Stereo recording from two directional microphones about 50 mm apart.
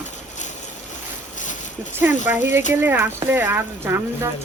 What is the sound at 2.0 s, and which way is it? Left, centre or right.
Speech, right.